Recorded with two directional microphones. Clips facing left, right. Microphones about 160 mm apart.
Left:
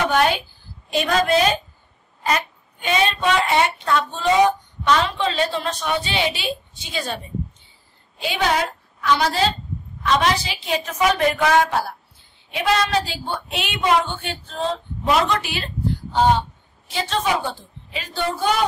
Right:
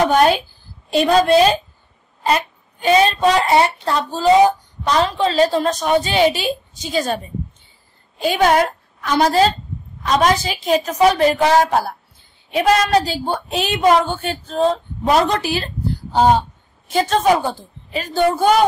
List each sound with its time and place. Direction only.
0.0 s a woman's voice: 40° right (ahead or behind)
8.2 s a woman's voice: 50° right (ahead or behind)